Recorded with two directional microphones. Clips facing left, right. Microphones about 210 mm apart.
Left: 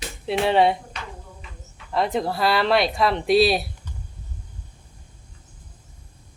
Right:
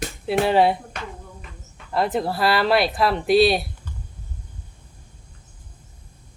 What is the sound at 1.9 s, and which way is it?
A man's voice, centre (ahead or behind).